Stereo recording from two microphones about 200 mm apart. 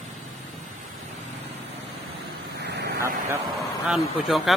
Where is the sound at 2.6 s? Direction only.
55° right (ahead or behind).